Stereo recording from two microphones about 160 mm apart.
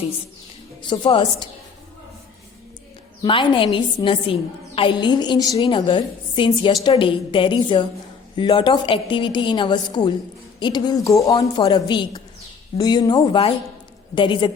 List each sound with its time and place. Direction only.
0.8 s a woman's voice: 30° left (ahead or behind)
3.2 s a woman's voice: 30° left (ahead or behind)